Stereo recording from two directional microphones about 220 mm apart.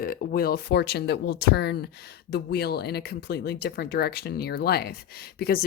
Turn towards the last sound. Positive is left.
turn(degrees=45)  # may be behind; listen again after turning